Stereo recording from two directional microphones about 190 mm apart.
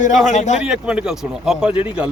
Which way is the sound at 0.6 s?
5° right (ahead or behind).